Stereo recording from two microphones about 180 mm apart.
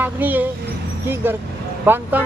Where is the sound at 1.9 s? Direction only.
10° right (ahead or behind).